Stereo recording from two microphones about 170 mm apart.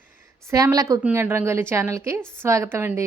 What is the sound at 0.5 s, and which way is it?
A woman's voice, 20° right (ahead or behind).